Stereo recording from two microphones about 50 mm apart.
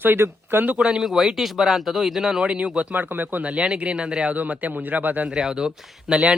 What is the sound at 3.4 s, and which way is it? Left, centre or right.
Speech, right.